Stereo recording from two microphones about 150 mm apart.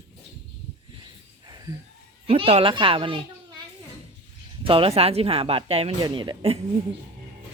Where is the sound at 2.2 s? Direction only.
40° right (ahead or behind).